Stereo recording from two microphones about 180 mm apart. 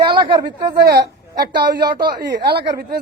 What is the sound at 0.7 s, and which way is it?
Speech, 65° right (ahead or behind).